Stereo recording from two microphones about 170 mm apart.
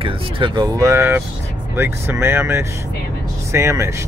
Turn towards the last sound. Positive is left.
turn(degrees=-15)  # may be behind; listen again after turning